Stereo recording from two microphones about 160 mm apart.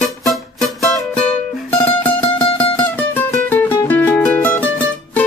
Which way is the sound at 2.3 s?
30° left (ahead or behind).